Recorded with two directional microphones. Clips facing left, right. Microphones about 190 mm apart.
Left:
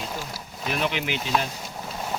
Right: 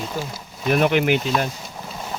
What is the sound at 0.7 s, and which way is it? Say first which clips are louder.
Speech: right 10 dB; 55° right (ahead or behind).